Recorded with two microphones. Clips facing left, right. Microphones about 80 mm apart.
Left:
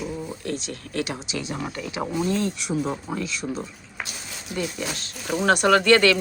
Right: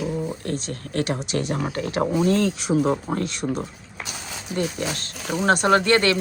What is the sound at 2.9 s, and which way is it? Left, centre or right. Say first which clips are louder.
Speech: right 5 dB; right.